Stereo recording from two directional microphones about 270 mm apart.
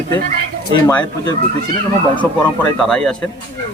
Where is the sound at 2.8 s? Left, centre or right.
Centre.